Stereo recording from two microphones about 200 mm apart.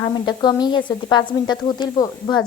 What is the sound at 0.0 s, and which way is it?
A woman's voice, 20° left (ahead or behind).